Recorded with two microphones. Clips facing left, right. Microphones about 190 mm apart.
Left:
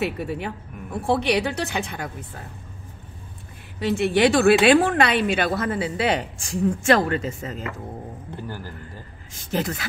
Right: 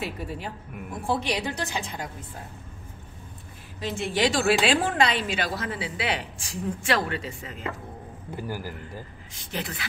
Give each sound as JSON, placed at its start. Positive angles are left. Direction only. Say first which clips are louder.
{"t": 0.0, "sound": "a woman's voice", "louder": "left 7 dB", "side_deg": 65}
{"t": 3.8, "sound": "a woman's voice", "louder": "left 7 dB", "side_deg": 65}
{"t": 8.4, "sound": "a man's voice", "louder": "right 3 dB", "side_deg": -10}
{"t": 9.3, "sound": "a man's voice", "louder": "left 8 dB", "side_deg": 45}